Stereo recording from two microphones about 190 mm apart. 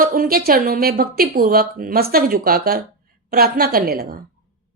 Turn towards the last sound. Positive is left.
turn(degrees=-50)  # may be behind; listen again after turning